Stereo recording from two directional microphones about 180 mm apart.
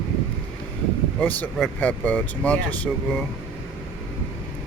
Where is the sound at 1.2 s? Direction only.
10° left (ahead or behind).